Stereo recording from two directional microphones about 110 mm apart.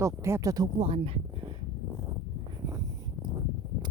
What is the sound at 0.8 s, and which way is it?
Speech, 60° right (ahead or behind).